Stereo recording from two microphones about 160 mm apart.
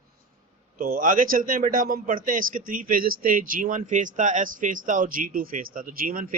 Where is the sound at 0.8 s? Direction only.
65° right (ahead or behind).